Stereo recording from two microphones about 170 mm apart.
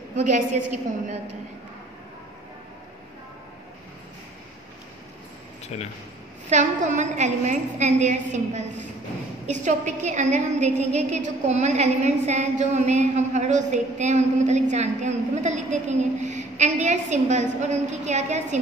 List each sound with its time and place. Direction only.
0.1 s a woman's voice: 45° right (ahead or behind)
6.5 s a woman's voice: 45° right (ahead or behind)